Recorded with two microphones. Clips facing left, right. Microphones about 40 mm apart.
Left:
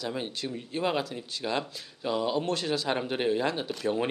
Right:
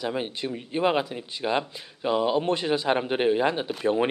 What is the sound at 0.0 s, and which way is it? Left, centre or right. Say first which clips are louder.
Speech: right 4 dB; right.